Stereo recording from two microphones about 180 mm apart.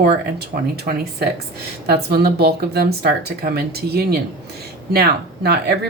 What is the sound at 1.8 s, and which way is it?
Speech, 60° right (ahead or behind).